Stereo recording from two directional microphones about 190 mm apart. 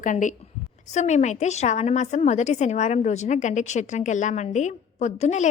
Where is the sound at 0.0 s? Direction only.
40° left (ahead or behind).